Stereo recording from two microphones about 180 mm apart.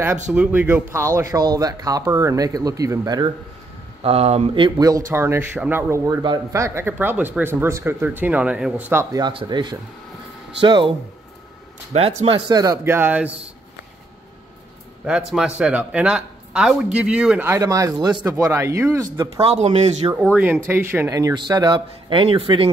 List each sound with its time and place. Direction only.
0.3 s speech: 10° right (ahead or behind)
4.0 s speech: 35° right (ahead or behind); by 9.0 s 10° right (ahead or behind)
9.1 s speech: 25° right (ahead or behind)
11.9 s speech: 35° right (ahead or behind)
12.4 s speech: 20° right (ahead or behind)
15.0 s speech: 5° right (ahead or behind)
19.4 s speech: 35° right (ahead or behind)
20.6 s speech: 10° right (ahead or behind); by 22.7 s 30° right (ahead or behind)